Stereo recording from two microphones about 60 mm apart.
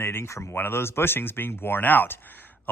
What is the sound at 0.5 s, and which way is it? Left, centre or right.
Speech, left.